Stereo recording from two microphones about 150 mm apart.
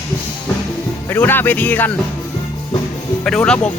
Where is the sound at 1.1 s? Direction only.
15° left (ahead or behind).